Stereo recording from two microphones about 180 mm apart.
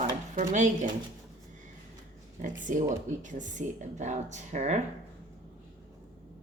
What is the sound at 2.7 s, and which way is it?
Speech, 45° right (ahead or behind).